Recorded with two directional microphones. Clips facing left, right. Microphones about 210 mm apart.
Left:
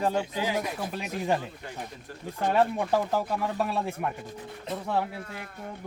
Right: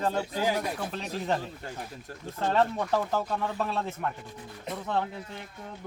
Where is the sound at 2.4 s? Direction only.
10° left (ahead or behind).